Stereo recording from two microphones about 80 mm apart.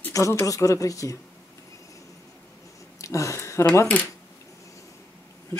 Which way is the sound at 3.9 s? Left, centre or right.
Centre.